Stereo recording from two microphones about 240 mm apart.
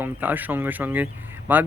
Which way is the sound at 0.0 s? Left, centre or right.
Centre.